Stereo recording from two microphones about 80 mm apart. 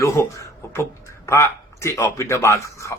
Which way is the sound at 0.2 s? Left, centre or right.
Left.